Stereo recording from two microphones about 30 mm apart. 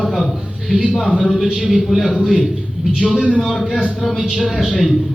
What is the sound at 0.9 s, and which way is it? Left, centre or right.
Speech, centre.